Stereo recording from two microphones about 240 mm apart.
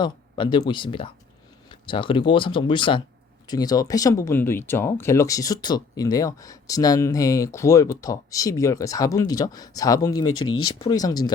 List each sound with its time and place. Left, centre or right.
0.0 s speech: centre